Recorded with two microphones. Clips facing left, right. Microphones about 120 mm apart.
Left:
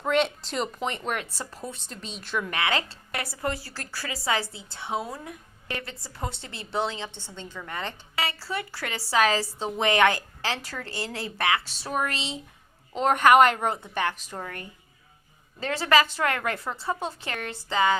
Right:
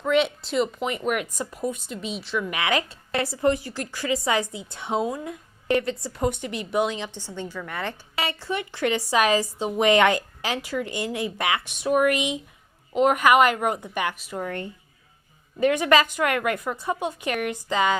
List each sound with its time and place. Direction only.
0.0 s a woman's voice: 5° right (ahead or behind)
2.5 s a woman's voice: 20° right (ahead or behind)
3.1 s a woman's voice: 30° right (ahead or behind)
7.7 s speech: 20° left (ahead or behind)
8.1 s a woman's voice: 25° right (ahead or behind)
15.6 s a woman's voice: 20° right (ahead or behind)